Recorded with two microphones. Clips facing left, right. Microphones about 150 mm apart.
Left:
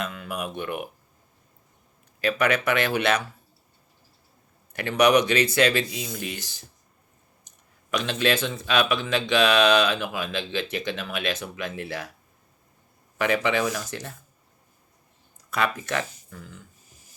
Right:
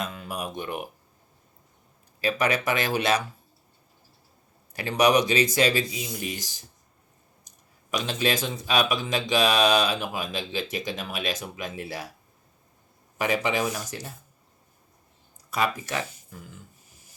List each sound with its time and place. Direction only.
0.3 s speech: 35° right (ahead or behind)
2.5 s speech: 40° right (ahead or behind)
4.7 s speech: 35° right (ahead or behind)
5.2 s speech: 15° right (ahead or behind)
7.9 s speech: 10° right (ahead or behind)
13.1 s speech: 15° right (ahead or behind)
15.4 s speech: 10° right (ahead or behind)
16.3 s a sound: 20° right (ahead or behind)